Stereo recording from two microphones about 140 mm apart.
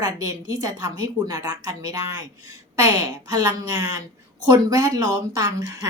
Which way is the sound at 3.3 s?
25° right (ahead or behind).